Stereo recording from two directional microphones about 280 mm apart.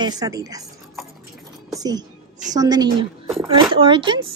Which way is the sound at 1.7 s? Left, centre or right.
Centre.